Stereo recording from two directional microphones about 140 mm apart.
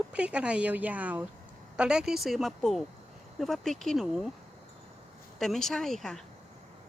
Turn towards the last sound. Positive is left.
turn(degrees=5)  # may be behind; listen again after turning